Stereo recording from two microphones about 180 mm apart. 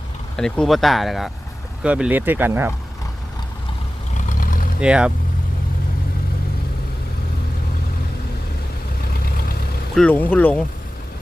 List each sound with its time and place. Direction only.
0.3 s speech: 5° left (ahead or behind); by 2.7 s 10° right (ahead or behind)
4.1 s vehicle: 45° left (ahead or behind)
4.8 s speech: 5° right (ahead or behind)
9.0 s vehicle: 55° left (ahead or behind)
9.9 s speech: 5° left (ahead or behind)